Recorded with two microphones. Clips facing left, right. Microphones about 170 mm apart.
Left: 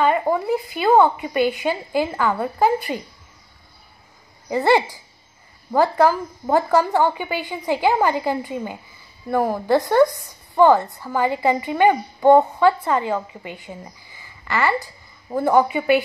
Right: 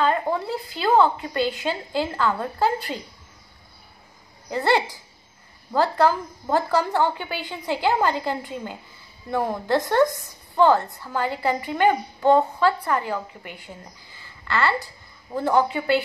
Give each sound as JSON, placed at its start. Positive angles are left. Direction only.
{"t": 0.0, "sound": "a sound", "side_deg": 10}
{"t": 0.7, "sound": "a woman's voice", "side_deg": 15}
{"t": 4.6, "sound": "a woman's voice", "side_deg": 15}